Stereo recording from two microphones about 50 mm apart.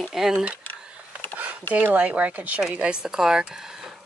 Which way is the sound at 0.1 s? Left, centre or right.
Centre.